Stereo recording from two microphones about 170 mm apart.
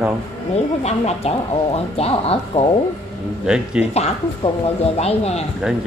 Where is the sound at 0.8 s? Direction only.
40° left (ahead or behind).